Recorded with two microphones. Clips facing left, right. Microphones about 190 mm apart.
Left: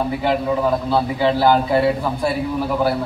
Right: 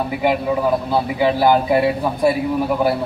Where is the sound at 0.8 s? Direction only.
15° right (ahead or behind).